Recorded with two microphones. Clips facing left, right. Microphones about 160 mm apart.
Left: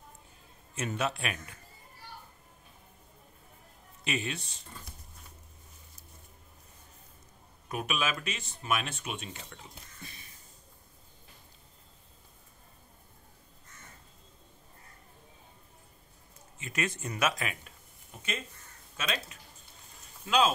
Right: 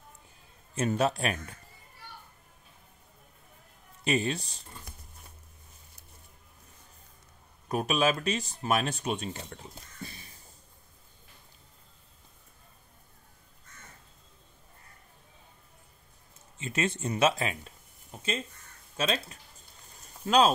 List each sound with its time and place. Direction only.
0.7 s speech: 35° right (ahead or behind)
4.0 s speech: 35° right (ahead or behind)
7.6 s speech: 35° right (ahead or behind)
10.0 s a sound: 35° right (ahead or behind)
16.5 s speech: 30° right (ahead or behind)
18.9 s speech: 35° right (ahead or behind)